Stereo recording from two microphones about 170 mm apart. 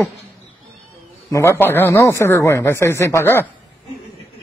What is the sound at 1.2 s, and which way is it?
Speech, 15° left (ahead or behind).